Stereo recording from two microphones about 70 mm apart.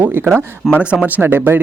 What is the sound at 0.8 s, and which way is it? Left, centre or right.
Speech, centre.